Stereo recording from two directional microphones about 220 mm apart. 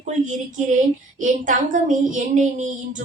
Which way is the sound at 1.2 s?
35° right (ahead or behind).